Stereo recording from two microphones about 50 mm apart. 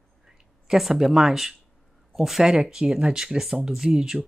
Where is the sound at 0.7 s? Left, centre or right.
Centre.